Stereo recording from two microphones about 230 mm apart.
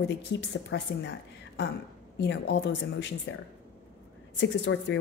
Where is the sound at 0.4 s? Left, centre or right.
Left.